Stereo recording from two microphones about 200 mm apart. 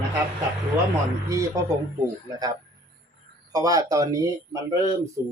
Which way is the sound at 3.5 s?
15° right (ahead or behind).